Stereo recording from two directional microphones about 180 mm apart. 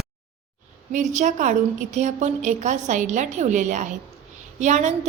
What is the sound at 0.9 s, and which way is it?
A woman's voice, 40° right (ahead or behind).